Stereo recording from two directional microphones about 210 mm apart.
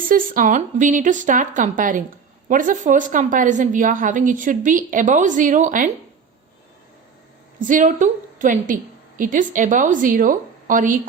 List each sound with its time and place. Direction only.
0.1 s a woman's voice: 40° right (ahead or behind)
7.6 s a woman's voice: 40° right (ahead or behind)